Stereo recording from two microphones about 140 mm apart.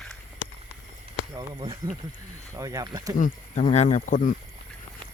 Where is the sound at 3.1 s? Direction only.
65° left (ahead or behind).